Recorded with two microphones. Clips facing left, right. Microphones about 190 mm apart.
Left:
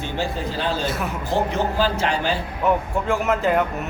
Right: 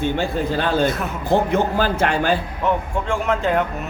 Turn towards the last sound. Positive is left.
turn(degrees=5)  # may be behind; listen again after turning